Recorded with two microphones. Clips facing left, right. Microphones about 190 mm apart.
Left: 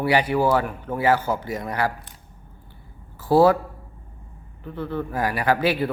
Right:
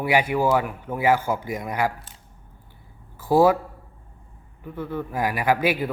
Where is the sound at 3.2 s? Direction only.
10° right (ahead or behind).